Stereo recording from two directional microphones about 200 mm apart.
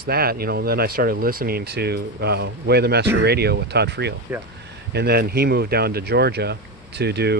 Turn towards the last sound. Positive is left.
turn(degrees=-55)  # may be behind; listen again after turning